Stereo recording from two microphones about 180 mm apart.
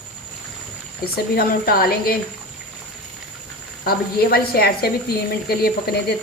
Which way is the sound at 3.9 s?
60° left (ahead or behind).